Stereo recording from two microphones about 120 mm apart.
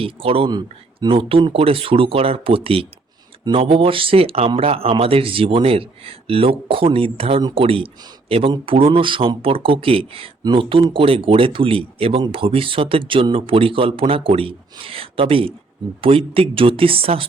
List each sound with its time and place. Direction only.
0.0 s speech: 50° right (ahead or behind)